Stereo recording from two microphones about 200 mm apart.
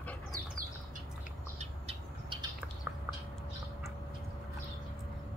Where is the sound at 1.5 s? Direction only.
25° right (ahead or behind).